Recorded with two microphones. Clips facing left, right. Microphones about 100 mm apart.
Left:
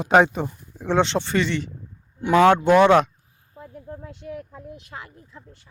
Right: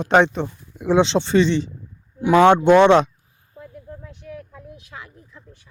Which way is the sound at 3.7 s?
40° left (ahead or behind).